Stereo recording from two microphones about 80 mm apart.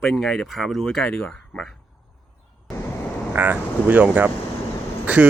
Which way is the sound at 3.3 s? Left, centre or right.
Right.